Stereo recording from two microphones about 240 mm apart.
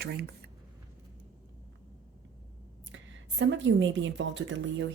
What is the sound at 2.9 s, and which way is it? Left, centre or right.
Speech, right.